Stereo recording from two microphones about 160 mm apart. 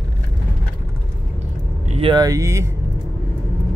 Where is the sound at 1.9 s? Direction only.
30° right (ahead or behind).